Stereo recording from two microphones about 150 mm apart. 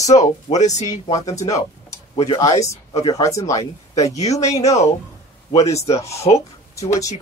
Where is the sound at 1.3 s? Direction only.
20° left (ahead or behind).